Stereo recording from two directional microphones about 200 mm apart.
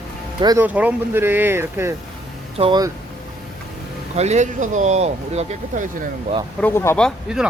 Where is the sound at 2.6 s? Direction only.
20° right (ahead or behind).